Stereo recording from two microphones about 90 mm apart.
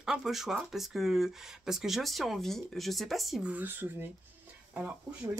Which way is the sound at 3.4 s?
20° right (ahead or behind).